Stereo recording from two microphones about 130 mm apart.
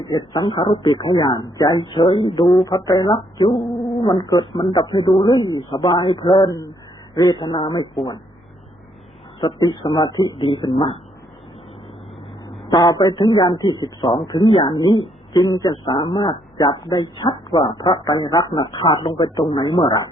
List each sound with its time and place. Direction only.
0.0 s a man's voice: 35° left (ahead or behind)
1.9 s a man's voice: 40° left (ahead or behind)
2.6 s speech: 30° left (ahead or behind)
3.4 s mantra: 50° left (ahead or behind)
4.0 s a man's voice: 30° left (ahead or behind)
6.3 s speech: 25° left (ahead or behind)
9.4 s a man's voice: 35° left (ahead or behind)
12.6 s a man's voice: 35° left (ahead or behind)